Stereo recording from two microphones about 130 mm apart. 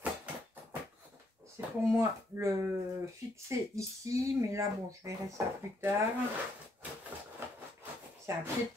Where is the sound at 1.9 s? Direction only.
20° right (ahead or behind).